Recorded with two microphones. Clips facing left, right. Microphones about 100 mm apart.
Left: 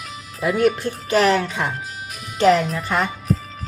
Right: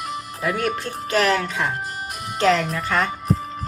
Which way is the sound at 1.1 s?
20° left (ahead or behind).